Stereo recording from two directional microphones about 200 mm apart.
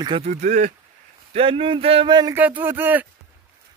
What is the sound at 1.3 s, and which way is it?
Speech, 25° right (ahead or behind).